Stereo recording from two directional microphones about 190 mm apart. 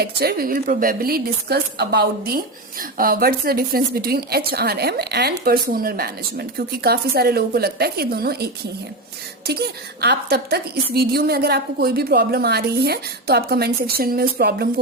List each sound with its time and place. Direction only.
0.0 s a woman's voice: 55° right (ahead or behind)
9.5 s a woman's voice: 60° right (ahead or behind)